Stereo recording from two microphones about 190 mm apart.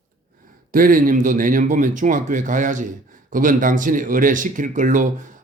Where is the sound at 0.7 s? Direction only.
45° right (ahead or behind).